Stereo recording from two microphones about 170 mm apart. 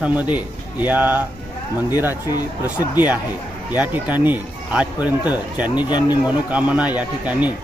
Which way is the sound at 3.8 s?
10° right (ahead or behind).